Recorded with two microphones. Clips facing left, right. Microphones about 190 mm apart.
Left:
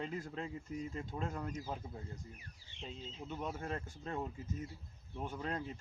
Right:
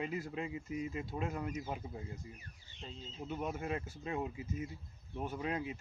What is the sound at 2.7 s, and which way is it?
Speech, 40° right (ahead or behind).